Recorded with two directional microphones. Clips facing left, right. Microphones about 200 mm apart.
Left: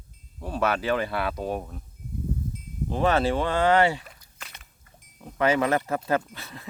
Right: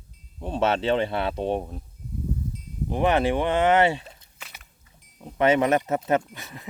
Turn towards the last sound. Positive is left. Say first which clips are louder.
# right 2 dB
turn(degrees=-20)  # may be behind; listen again after turning